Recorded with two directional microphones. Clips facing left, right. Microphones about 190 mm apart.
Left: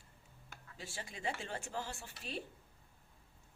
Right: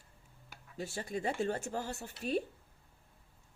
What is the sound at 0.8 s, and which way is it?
Speech, 45° right (ahead or behind).